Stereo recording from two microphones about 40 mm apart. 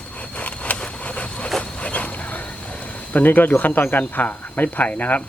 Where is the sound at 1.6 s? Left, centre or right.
Left.